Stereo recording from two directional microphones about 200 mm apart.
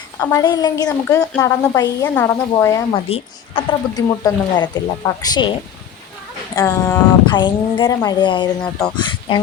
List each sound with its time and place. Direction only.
0.2 s a woman's voice: 15° left (ahead or behind)
6.6 s a woman's voice: 15° left (ahead or behind)